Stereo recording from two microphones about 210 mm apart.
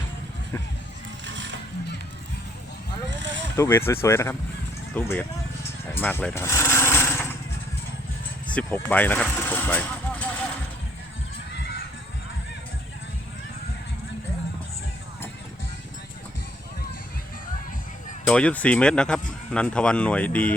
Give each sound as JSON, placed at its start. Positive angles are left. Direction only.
{"t": 1.3, "sound": "music", "side_deg": -60}
{"t": 3.6, "sound": "speech", "side_deg": 10}
{"t": 6.0, "sound": "jackhammer", "side_deg": 10}
{"t": 8.5, "sound": "vehicle", "side_deg": 5}
{"t": 18.3, "sound": "speech", "side_deg": 5}